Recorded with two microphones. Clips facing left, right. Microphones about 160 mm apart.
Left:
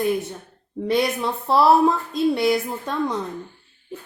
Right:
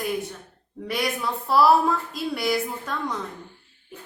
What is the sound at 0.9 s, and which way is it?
A woman's voice, 25° left (ahead or behind).